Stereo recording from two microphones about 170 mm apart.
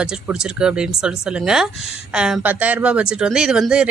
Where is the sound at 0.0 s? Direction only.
5° right (ahead or behind).